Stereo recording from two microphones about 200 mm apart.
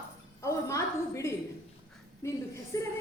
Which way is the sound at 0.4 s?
15° left (ahead or behind).